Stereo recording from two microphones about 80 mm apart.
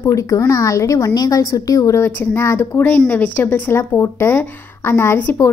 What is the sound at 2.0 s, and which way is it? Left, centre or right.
A woman's voice, left.